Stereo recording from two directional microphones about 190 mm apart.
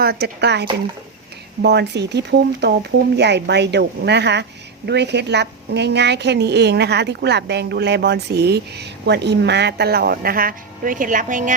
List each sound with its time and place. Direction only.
0.0 s a woman's voice: 60° right (ahead or behind); by 11.5 s 40° right (ahead or behind)